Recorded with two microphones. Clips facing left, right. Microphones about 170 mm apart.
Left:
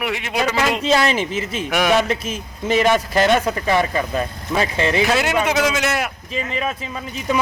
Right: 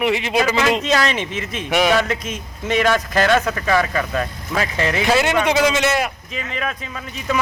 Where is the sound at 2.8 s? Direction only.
20° left (ahead or behind).